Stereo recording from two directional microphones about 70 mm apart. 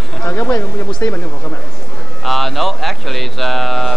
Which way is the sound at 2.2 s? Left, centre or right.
Centre.